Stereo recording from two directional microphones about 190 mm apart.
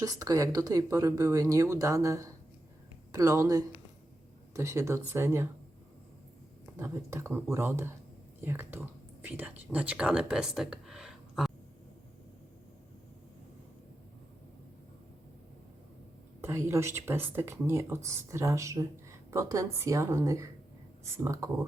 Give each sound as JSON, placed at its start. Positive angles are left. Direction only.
{"t": 0.0, "sound": "speech", "side_deg": -20}
{"t": 6.7, "sound": "speech", "side_deg": -15}
{"t": 16.4, "sound": "speech", "side_deg": -15}